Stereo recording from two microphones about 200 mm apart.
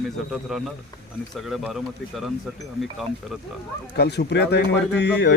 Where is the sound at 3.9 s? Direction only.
55° left (ahead or behind).